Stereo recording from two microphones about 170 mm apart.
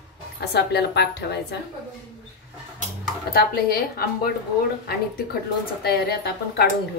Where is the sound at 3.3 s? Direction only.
65° left (ahead or behind).